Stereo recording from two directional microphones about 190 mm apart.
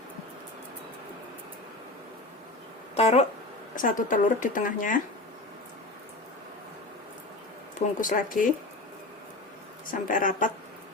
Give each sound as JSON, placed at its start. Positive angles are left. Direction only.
{"t": 2.9, "sound": "speech", "side_deg": 35}
{"t": 3.8, "sound": "speech", "side_deg": 45}
{"t": 8.0, "sound": "speech", "side_deg": 45}
{"t": 9.8, "sound": "speech", "side_deg": 45}